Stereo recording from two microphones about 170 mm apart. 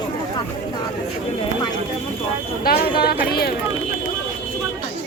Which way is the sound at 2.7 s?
65° left (ahead or behind).